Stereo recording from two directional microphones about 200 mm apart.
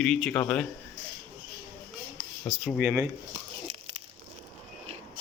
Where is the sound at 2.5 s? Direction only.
Centre (ahead or behind).